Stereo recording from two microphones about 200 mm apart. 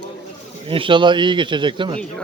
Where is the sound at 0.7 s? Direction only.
25° right (ahead or behind).